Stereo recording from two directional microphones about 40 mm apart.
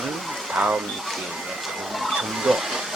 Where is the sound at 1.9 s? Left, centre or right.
Centre.